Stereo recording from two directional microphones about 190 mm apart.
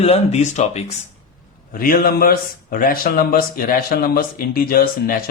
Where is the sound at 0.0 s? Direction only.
35° left (ahead or behind).